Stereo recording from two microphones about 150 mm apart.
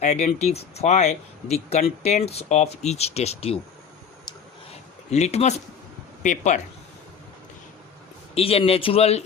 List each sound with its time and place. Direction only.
0.0 s speech: 50° left (ahead or behind)
5.1 s speech: 45° left (ahead or behind)
8.4 s speech: 40° left (ahead or behind)